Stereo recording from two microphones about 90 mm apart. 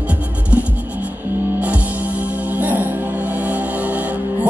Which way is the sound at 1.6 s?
15° right (ahead or behind).